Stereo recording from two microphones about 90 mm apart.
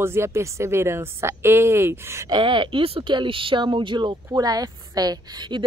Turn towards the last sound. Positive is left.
turn(degrees=-45)  # may be behind; listen again after turning